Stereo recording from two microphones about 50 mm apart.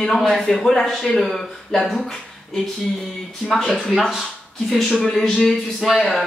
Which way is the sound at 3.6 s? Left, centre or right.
Centre.